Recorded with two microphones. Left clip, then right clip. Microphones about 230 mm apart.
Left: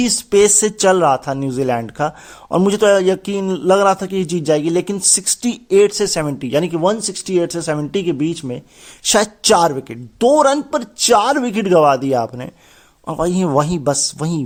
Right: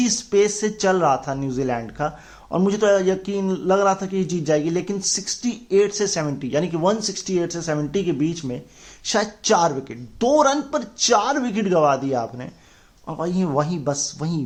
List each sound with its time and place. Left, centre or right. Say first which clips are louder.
0.0 s speech: left 6 dB; left